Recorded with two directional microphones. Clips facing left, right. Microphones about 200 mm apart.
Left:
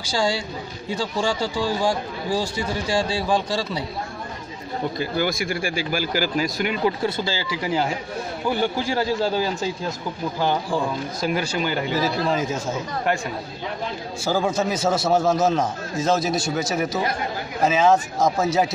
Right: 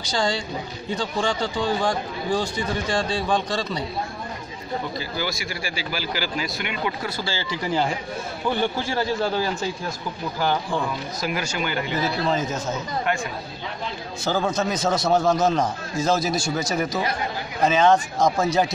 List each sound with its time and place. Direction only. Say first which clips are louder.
0.1 s speech: left 1 dB; 10° left (ahead or behind)
4.9 s speech: left 5 dB; 55° left (ahead or behind)
7.4 s speech: right 2 dB; 5° left (ahead or behind)
11.1 s speech: left 4 dB; 30° left (ahead or behind)
11.9 s speech: even; 10° left (ahead or behind)
14.2 s speech: left 1 dB; 10° left (ahead or behind)